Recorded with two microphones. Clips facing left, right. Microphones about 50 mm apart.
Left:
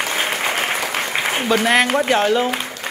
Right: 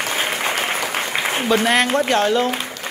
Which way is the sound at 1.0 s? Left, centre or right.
Centre.